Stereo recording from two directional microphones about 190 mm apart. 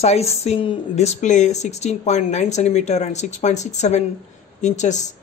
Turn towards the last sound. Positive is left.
turn(degrees=40)  # may be behind; listen again after turning